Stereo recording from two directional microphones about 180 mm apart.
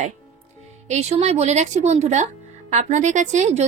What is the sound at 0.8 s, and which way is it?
A woman's voice, 40° right (ahead or behind).